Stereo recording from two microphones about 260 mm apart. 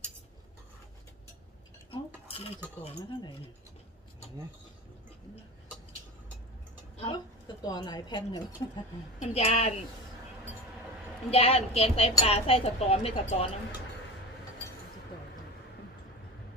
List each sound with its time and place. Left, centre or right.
1.9 s a sound: left
2.8 s a woman's voice: centre
6.9 s a woman's voice: centre
11.3 s a woman's voice: left